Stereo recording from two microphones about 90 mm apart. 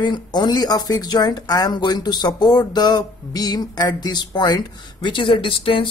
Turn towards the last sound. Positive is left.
turn(degrees=80)